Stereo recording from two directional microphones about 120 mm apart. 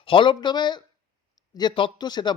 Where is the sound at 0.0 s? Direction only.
45° left (ahead or behind).